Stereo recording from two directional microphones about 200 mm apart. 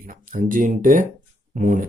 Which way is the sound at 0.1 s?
40° right (ahead or behind).